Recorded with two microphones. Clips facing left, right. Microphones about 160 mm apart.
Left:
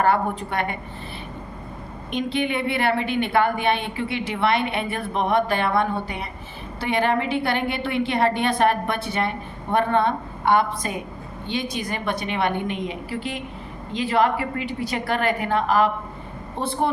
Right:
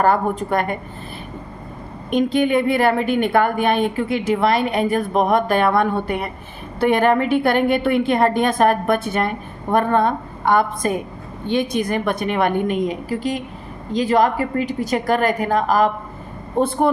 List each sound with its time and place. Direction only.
0.0 s a woman's voice: 45° right (ahead or behind)
2.0 s a woman's voice: 45° right (ahead or behind)